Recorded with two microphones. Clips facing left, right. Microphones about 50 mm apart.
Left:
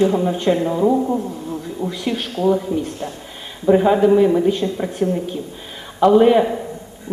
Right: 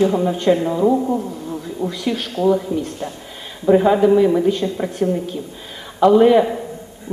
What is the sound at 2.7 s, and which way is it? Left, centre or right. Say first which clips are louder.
A man's voice: even; centre.